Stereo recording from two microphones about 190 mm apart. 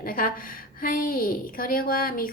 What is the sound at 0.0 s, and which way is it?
A woman's voice, 50° left (ahead or behind).